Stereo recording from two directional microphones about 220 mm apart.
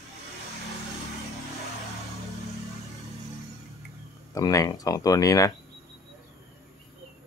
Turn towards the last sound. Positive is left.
turn(degrees=15)  # may be behind; listen again after turning